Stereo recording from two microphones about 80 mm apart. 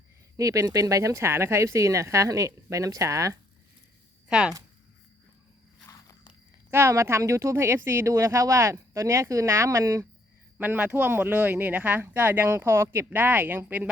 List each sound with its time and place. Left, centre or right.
0.3 s speech: right
4.3 s speech: centre
6.7 s speech: right
10.9 s speech: right
12.5 s speech: right